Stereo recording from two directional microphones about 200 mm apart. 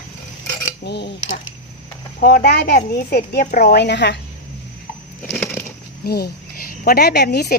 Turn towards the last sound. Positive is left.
turn(degrees=55)  # may be behind; listen again after turning